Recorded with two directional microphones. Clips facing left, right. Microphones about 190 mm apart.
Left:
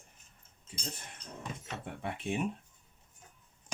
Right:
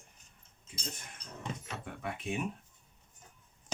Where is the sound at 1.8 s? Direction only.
30° left (ahead or behind).